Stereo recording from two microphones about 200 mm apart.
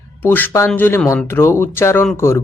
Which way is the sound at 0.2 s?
10° left (ahead or behind).